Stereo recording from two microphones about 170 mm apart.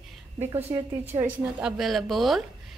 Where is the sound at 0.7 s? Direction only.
25° right (ahead or behind).